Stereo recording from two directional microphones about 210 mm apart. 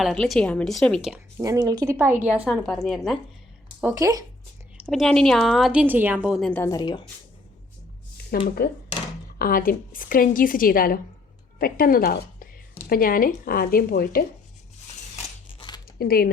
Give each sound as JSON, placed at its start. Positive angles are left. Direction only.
{"t": 0.0, "sound": "a woman's voice", "side_deg": 0}
{"t": 1.1, "sound": "a woman's voice", "side_deg": -15}
{"t": 3.9, "sound": "speech", "side_deg": -15}
{"t": 4.9, "sound": "a woman's voice", "side_deg": 0}
{"t": 8.4, "sound": "a woman's voice", "side_deg": 45}
{"t": 15.1, "sound": "scissors", "side_deg": 25}
{"t": 16.0, "sound": "a woman's voice", "side_deg": 45}